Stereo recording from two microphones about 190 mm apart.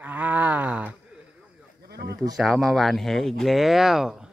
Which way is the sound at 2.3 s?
Centre (ahead or behind).